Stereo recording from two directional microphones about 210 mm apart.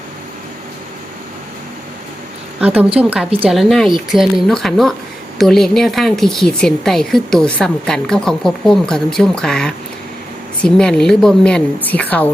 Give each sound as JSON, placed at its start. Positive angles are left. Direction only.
{"t": 2.6, "sound": "a woman's voice", "side_deg": -10}